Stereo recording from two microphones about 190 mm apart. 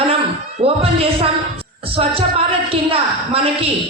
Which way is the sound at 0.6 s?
30° right (ahead or behind).